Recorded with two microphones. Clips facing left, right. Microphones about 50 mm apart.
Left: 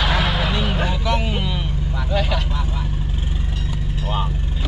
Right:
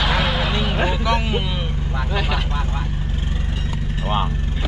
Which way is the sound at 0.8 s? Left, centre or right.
Centre.